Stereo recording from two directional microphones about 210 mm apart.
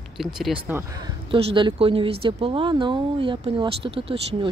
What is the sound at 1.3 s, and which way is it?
A woman's voice, 25° right (ahead or behind).